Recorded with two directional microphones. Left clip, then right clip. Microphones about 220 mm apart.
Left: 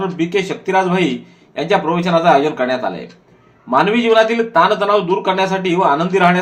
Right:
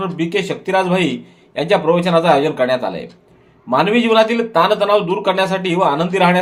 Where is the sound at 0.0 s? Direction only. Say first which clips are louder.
Left 1 dB; 45° right (ahead or behind).